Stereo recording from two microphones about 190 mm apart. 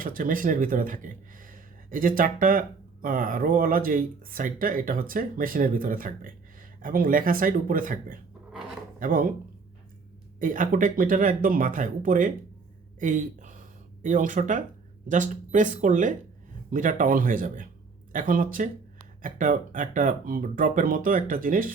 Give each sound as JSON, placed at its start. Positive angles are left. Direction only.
{"t": 0.0, "sound": "speech", "side_deg": -45}
{"t": 10.4, "sound": "speech", "side_deg": -45}
{"t": 13.0, "sound": "a sound", "side_deg": -40}
{"t": 14.0, "sound": "speech", "side_deg": -40}